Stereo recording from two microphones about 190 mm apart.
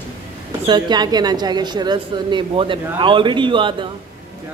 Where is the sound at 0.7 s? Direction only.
20° right (ahead or behind).